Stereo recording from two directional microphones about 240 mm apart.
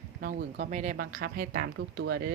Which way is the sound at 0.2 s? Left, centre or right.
Right.